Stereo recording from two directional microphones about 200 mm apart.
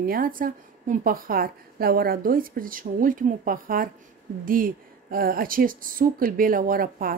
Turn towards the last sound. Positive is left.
turn(degrees=-45)  # may be behind; listen again after turning